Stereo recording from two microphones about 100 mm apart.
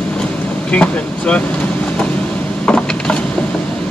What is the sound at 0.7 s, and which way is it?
Speech, 10° left (ahead or behind).